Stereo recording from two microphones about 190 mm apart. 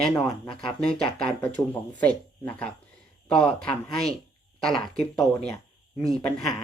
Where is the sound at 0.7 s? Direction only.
5° left (ahead or behind).